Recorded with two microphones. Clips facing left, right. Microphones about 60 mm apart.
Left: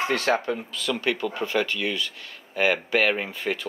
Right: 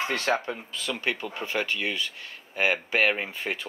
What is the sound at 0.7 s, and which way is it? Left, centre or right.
Speech, right.